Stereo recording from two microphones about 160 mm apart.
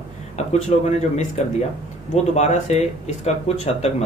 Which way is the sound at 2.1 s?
45° left (ahead or behind).